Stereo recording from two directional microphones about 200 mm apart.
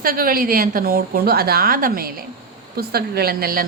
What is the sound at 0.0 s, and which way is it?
Speech, 45° right (ahead or behind).